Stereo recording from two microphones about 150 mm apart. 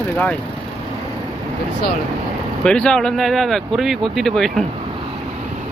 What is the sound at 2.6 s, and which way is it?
Speech, 5° left (ahead or behind).